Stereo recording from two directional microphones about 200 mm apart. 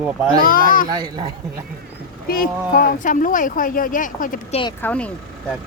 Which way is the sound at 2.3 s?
45° left (ahead or behind).